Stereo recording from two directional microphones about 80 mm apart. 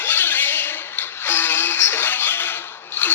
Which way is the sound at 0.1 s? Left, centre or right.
Left.